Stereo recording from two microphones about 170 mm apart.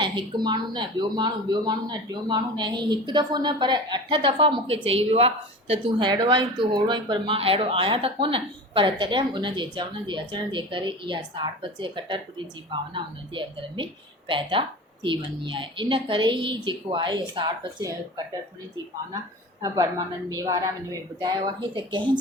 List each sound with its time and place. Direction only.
0.0 s a woman's voice: 25° right (ahead or behind)
20.3 s a woman's voice: 20° right (ahead or behind)